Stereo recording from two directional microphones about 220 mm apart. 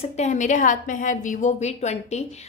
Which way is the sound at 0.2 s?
35° left (ahead or behind).